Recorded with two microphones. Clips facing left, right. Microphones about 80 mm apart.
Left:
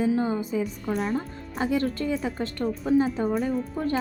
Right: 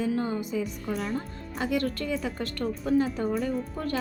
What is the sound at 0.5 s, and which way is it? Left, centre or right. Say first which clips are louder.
Speech: left 3 dB; left.